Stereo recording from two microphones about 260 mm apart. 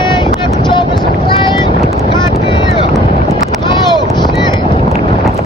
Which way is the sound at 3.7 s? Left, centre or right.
Centre.